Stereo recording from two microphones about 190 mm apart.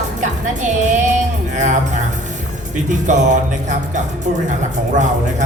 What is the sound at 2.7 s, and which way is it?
A woman's voice, 40° right (ahead or behind).